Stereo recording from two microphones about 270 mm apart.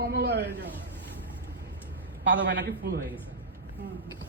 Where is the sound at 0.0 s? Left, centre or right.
Right.